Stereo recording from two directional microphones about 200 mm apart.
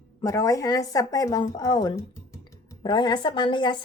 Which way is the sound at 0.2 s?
15° left (ahead or behind).